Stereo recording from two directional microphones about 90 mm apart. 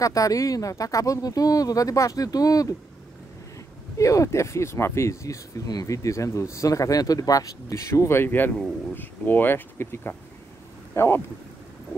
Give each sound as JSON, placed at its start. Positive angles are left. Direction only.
{"t": 0.0, "sound": "speech", "side_deg": 40}
{"t": 4.0, "sound": "speech", "side_deg": 35}